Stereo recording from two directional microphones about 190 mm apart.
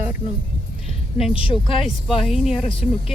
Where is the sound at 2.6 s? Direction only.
30° left (ahead or behind).